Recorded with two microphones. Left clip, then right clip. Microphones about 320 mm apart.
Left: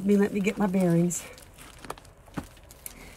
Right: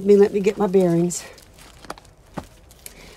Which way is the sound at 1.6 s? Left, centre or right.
Centre.